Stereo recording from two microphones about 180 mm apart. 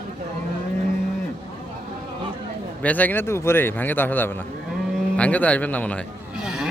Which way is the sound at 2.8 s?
10° left (ahead or behind).